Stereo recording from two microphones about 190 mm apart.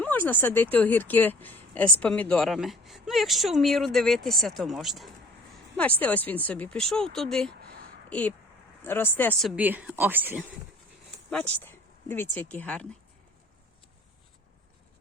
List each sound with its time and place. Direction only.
0.0 s speech: 10° left (ahead or behind)
7.6 s a sound: 55° right (ahead or behind)
8.8 s speech: 10° left (ahead or behind)
9.5 s speech: 10° right (ahead or behind)
11.3 s speech: 10° left (ahead or behind)